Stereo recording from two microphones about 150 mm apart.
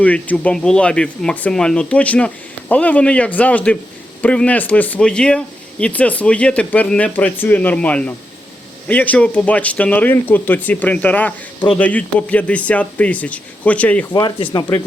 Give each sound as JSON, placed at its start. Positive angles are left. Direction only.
{"t": 0.0, "sound": "speech", "side_deg": 10}
{"t": 14.1, "sound": "speech", "side_deg": 30}